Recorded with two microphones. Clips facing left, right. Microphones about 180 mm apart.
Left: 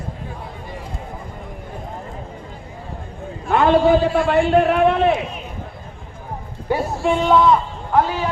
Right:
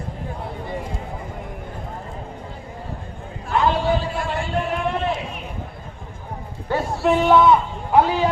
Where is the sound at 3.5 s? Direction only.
60° left (ahead or behind).